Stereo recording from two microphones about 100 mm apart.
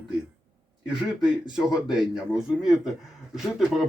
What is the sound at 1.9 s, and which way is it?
Speech, 5° right (ahead or behind).